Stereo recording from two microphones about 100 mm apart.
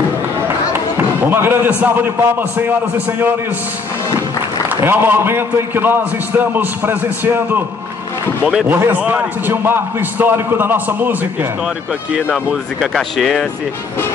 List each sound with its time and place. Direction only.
1.3 s a man's voice: 20° right (ahead or behind)
4.6 s a man's voice: 20° right (ahead or behind)
8.6 s a man's voice: 20° right (ahead or behind)
12.8 s speech: centre (ahead or behind)